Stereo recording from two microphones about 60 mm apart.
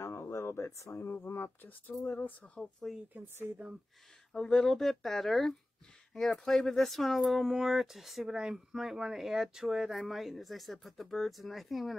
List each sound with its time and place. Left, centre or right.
0.0 s a sound: left
1.1 s speech: left
2.5 s speech: centre
3.2 s speech: centre
4.3 s speech: centre